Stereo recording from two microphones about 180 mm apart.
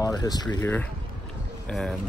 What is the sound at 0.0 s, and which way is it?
Speech, 20° left (ahead or behind).